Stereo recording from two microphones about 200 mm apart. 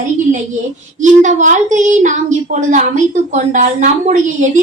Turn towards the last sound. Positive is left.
turn(degrees=-40)  # may be behind; listen again after turning